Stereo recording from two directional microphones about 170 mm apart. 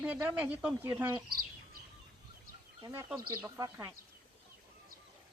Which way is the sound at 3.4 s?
15° right (ahead or behind).